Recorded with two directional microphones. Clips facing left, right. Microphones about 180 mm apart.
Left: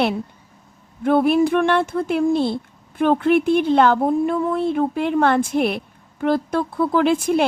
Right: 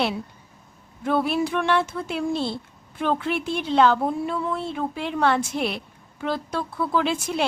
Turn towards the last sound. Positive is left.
turn(degrees=50)  # may be behind; listen again after turning